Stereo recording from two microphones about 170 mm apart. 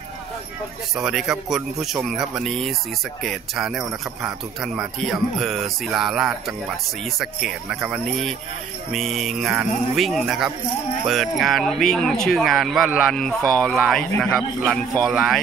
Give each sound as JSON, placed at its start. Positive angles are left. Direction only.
{"t": 0.9, "sound": "speech", "side_deg": -5}